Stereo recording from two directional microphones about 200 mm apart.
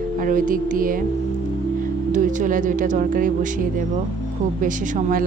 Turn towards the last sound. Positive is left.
turn(degrees=-40)  # may be behind; listen again after turning